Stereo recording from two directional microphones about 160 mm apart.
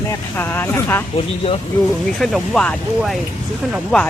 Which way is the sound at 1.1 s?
35° left (ahead or behind).